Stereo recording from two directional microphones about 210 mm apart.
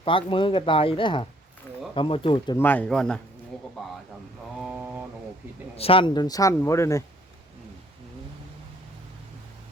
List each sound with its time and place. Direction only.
0.0 s speech: 25° left (ahead or behind)
2.6 s speech: 10° left (ahead or behind)
4.6 s mantra: 5° right (ahead or behind)
5.7 s speech: 25° left (ahead or behind)